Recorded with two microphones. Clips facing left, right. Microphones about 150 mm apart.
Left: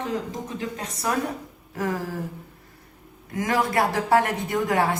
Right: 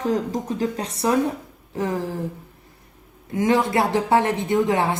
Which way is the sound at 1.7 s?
20° right (ahead or behind).